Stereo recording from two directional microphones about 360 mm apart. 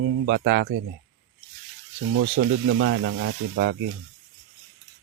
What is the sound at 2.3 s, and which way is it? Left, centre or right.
Speech, right.